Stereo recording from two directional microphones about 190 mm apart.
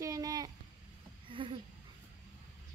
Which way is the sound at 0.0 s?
20° right (ahead or behind).